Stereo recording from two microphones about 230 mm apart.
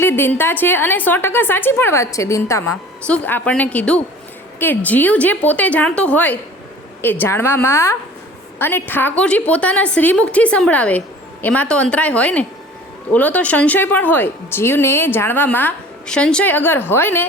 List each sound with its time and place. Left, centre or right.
0.0 s a woman's voice: centre